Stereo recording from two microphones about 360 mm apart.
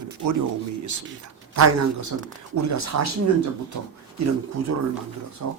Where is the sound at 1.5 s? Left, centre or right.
Right.